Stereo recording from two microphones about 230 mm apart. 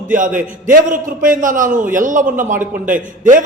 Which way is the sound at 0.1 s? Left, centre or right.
Right.